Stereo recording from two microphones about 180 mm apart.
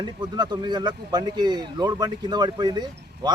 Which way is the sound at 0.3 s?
25° right (ahead or behind).